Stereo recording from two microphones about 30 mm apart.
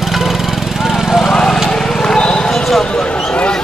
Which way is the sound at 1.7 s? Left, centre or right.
Centre.